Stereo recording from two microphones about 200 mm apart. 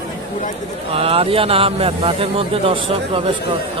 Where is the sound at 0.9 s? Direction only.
30° right (ahead or behind).